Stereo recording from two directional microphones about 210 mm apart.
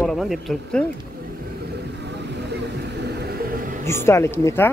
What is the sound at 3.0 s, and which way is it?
Music, 50° right (ahead or behind).